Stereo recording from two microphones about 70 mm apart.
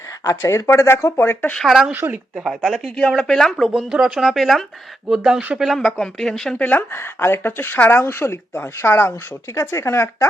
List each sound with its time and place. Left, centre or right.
0.3 s speech: left
1.6 s speech: centre
1.9 s speech: right
2.3 s speech: centre
4.0 s speech: centre
6.6 s speech: left